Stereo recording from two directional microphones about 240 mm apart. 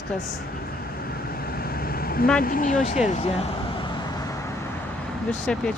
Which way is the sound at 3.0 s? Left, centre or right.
Left.